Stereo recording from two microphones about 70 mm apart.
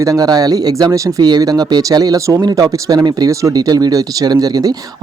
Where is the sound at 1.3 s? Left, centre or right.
Right.